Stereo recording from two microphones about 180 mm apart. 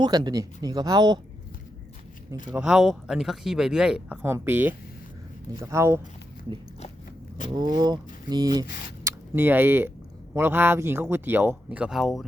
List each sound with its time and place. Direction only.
0.0 s speech: 20° right (ahead or behind)
2.5 s speech: 5° right (ahead or behind)
7.5 s speech: 20° right (ahead or behind)
9.0 s speech: 10° right (ahead or behind)